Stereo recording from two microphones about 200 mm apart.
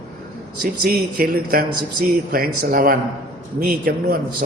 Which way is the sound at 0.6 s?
45° right (ahead or behind).